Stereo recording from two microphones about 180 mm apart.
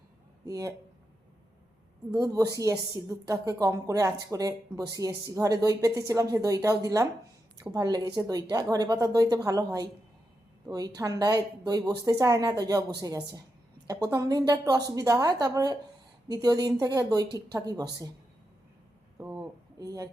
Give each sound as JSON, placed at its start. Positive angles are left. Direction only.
{"t": 0.4, "sound": "speech", "side_deg": -20}
{"t": 2.1, "sound": "a woman's voice", "side_deg": -20}
{"t": 19.2, "sound": "a sound", "side_deg": -15}